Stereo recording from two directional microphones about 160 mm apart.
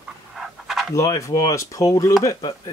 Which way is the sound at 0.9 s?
20° left (ahead or behind).